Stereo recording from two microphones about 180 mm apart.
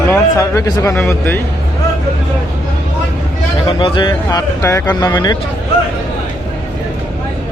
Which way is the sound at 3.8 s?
25° left (ahead or behind).